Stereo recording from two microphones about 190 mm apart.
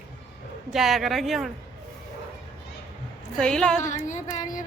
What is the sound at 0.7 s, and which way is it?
Speech, centre (ahead or behind).